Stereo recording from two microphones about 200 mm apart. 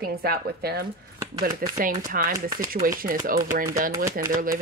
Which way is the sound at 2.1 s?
45° right (ahead or behind).